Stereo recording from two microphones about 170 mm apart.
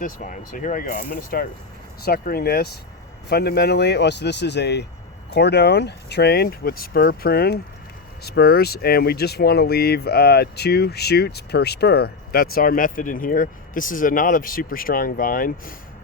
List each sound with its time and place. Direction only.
0.0 s speech: 50° left (ahead or behind)